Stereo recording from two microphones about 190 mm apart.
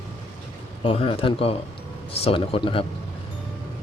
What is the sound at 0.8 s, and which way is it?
Speech, 30° left (ahead or behind).